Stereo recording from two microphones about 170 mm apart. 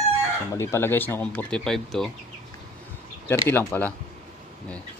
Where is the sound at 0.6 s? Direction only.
15° left (ahead or behind).